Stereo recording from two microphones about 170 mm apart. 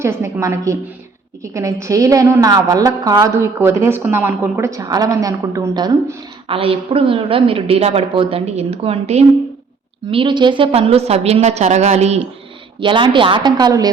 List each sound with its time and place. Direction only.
0.0 s a woman's voice: 15° right (ahead or behind); by 12.3 s 40° right (ahead or behind)
12.8 s a woman's voice: 30° right (ahead or behind)